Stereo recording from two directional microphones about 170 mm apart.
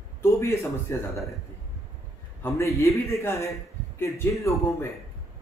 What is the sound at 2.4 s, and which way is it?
A man's voice, 15° left (ahead or behind).